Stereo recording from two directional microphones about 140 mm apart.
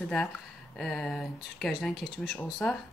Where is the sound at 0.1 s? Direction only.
5° left (ahead or behind).